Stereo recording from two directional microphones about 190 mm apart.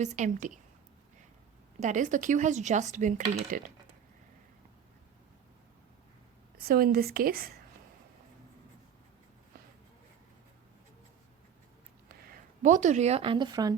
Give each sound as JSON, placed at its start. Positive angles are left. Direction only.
{"t": 0.0, "sound": "speech", "side_deg": -40}
{"t": 1.8, "sound": "speech", "side_deg": -40}
{"t": 6.6, "sound": "a woman's voice", "side_deg": -55}
{"t": 12.2, "sound": "speech", "side_deg": -45}